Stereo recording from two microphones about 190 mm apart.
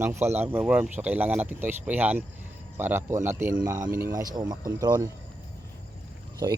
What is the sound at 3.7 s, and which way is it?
Speech, 45° right (ahead or behind).